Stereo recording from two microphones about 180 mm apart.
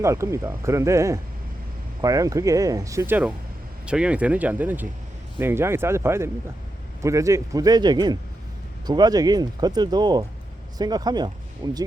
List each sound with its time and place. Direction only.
0.0 s speech: 15° right (ahead or behind)